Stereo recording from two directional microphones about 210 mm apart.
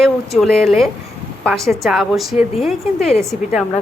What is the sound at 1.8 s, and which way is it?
Speech, centre (ahead or behind).